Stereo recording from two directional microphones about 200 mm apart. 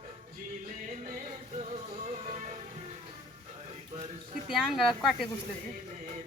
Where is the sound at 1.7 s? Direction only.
35° right (ahead or behind).